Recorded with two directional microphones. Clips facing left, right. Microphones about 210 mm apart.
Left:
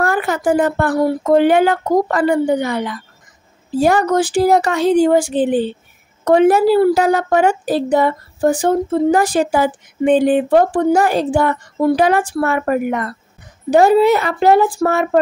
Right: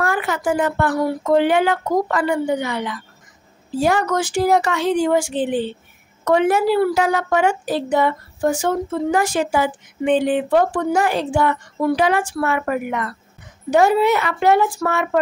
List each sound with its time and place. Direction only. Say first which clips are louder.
0.0 s a woman's voice: left 4 dB; 40° left (ahead or behind)